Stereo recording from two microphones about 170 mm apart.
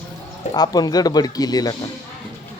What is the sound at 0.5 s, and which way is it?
Speech, 25° left (ahead or behind).